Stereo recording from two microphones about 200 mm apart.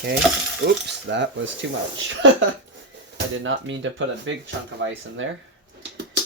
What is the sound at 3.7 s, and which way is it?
Speech, 70° right (ahead or behind).